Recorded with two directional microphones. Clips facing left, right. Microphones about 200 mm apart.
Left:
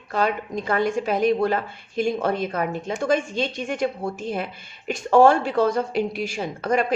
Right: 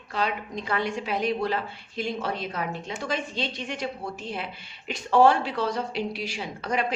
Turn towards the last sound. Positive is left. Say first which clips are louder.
# left 6 dB
turn(degrees=45)  # may be behind; listen again after turning